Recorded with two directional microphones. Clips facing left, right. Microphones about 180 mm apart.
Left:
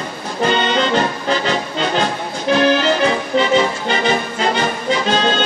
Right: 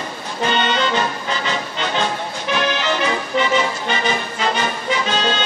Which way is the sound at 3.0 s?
35° left (ahead or behind).